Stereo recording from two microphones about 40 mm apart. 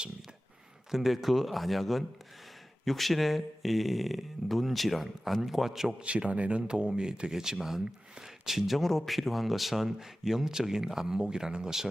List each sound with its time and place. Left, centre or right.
0.9 s speech: centre
6.0 s speech: right
6.6 s speech: right